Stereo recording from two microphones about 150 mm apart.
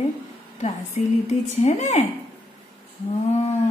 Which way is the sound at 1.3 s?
50° left (ahead or behind).